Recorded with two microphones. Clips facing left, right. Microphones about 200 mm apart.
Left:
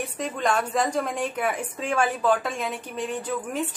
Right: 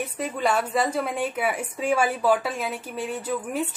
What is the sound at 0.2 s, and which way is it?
A woman's voice, 5° right (ahead or behind).